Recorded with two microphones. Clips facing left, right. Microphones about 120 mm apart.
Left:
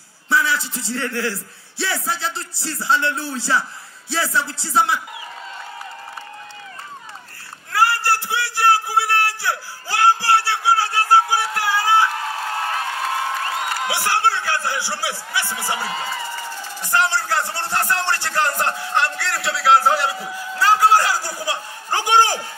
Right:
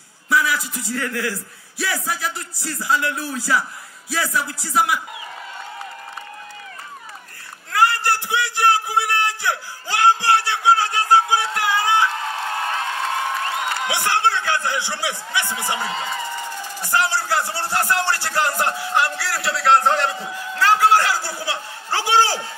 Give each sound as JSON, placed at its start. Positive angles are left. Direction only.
{"t": 0.3, "sound": "a man's voice", "side_deg": 30}
{"t": 2.0, "sound": "music", "side_deg": 30}
{"t": 7.7, "sound": "a sound", "side_deg": -20}